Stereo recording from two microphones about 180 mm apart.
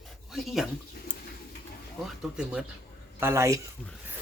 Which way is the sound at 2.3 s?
5° right (ahead or behind).